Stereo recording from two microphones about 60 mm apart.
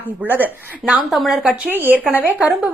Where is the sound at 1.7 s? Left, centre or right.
Right.